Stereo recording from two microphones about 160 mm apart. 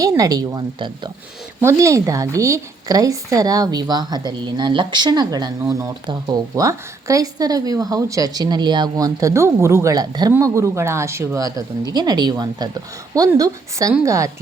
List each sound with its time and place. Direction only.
0.0 s speech: 20° right (ahead or behind)